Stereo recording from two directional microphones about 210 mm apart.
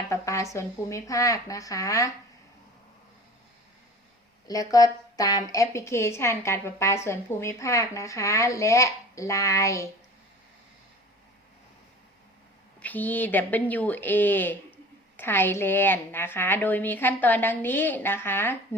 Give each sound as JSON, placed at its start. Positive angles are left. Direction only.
{"t": 0.1, "sound": "a sound", "side_deg": 15}
{"t": 0.5, "sound": "a woman's voice", "side_deg": 15}
{"t": 4.4, "sound": "a woman's voice", "side_deg": 15}
{"t": 12.8, "sound": "a woman's voice", "side_deg": 10}